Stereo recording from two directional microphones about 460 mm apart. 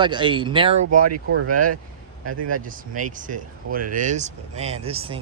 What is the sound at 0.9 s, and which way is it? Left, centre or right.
Speech, right.